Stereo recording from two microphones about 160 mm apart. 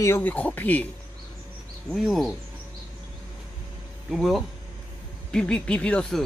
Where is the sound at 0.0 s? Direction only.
15° left (ahead or behind).